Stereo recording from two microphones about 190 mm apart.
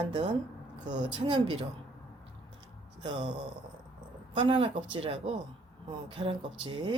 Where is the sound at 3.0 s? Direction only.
25° right (ahead or behind).